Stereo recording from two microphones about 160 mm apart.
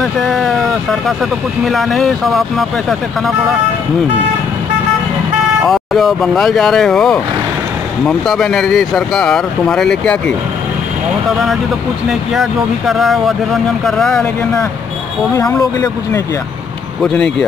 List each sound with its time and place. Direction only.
0.0 s speech: centre (ahead or behind)
5.6 s speech: centre (ahead or behind)
12.1 s speech: centre (ahead or behind)
15.3 s speech: 20° left (ahead or behind)
17.0 s speech: 5° left (ahead or behind)